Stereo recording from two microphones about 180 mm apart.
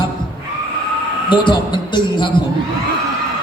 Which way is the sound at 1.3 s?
25° left (ahead or behind).